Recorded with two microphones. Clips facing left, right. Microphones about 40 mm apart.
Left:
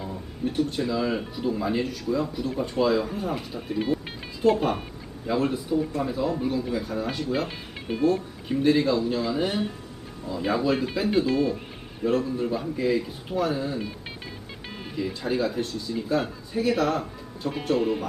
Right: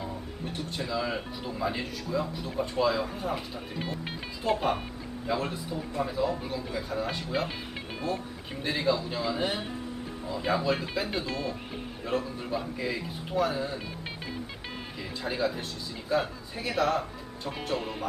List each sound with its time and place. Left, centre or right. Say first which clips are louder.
0.0 s a man's voice: left 5 dB; centre
14.9 s a man's voice: left 7 dB; centre